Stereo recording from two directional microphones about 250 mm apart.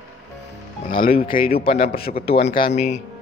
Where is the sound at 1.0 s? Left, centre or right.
Left.